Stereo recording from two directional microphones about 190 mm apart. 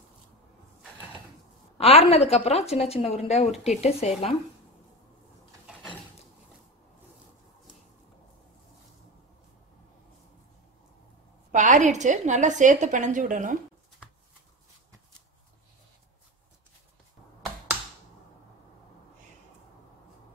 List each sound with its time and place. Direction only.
1.8 s a woman's voice: 30° left (ahead or behind)
11.5 s a woman's voice: 40° right (ahead or behind)